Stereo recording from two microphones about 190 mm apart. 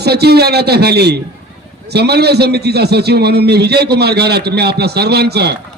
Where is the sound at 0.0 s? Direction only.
60° right (ahead or behind).